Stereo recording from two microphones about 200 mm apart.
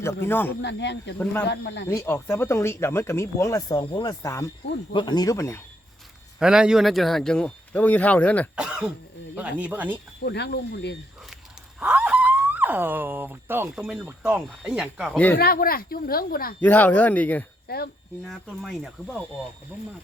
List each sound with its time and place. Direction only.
0.3 s speech: 10° left (ahead or behind)
0.6 s speech: 60° left (ahead or behind)
1.2 s speech: 5° left (ahead or behind)
1.5 s speech: 60° left (ahead or behind)
1.9 s speech: 15° left (ahead or behind)
6.4 s speech: 5° right (ahead or behind)
8.5 s speech: 5° right (ahead or behind)
10.2 s speech: 55° left (ahead or behind)
11.8 s a sound: 10° right (ahead or behind)
13.7 s speech: centre (ahead or behind)
15.4 s speech: 50° left (ahead or behind)
16.6 s speech: 10° left (ahead or behind)
17.7 s speech: 50° left (ahead or behind)
18.3 s speech: centre (ahead or behind)